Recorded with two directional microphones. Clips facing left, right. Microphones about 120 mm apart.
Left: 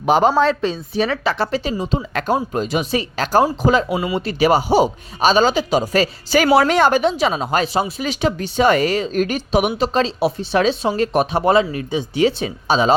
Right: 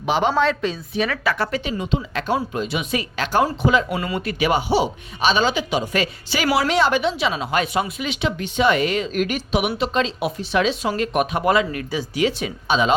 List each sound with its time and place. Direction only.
0.0 s speech: 40° left (ahead or behind)
1.8 s speech: 40° left (ahead or behind)
3.8 s speech: 10° left (ahead or behind)
4.2 s speech: 35° left (ahead or behind)